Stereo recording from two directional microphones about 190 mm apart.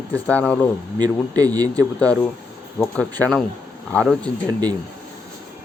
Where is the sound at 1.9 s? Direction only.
5° left (ahead or behind).